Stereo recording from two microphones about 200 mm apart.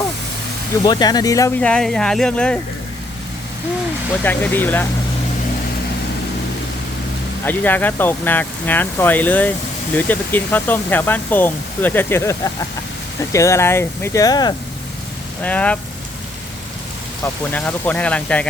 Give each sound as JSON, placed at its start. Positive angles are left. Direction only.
{"t": 0.9, "sound": "speech", "side_deg": 20}
{"t": 4.2, "sound": "speech", "side_deg": 10}
{"t": 7.4, "sound": "speech", "side_deg": 10}
{"t": 15.4, "sound": "speech", "side_deg": 5}
{"t": 17.2, "sound": "speech", "side_deg": 10}